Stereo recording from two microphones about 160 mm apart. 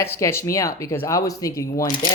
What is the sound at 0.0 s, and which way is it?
Speech, 15° left (ahead or behind).